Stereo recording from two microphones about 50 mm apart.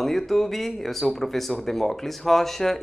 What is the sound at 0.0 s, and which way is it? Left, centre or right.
Speech, centre.